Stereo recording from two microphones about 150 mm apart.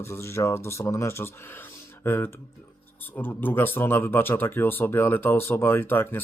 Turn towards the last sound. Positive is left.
turn(degrees=15)  # may be behind; listen again after turning